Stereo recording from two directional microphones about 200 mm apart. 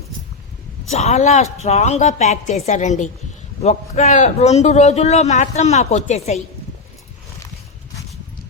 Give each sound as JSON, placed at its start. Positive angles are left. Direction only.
{"t": 0.9, "sound": "a man's voice", "side_deg": 35}